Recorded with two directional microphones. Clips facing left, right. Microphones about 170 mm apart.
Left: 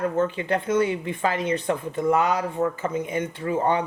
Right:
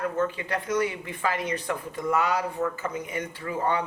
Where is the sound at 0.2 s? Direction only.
25° left (ahead or behind).